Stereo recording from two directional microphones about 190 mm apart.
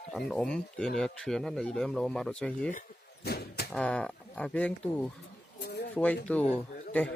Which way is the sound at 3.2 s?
55° left (ahead or behind).